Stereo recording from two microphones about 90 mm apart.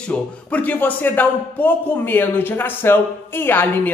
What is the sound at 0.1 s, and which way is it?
Speech, 15° left (ahead or behind).